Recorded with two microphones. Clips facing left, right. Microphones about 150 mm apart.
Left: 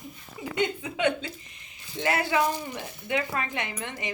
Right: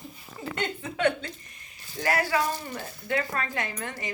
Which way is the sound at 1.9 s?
20° left (ahead or behind).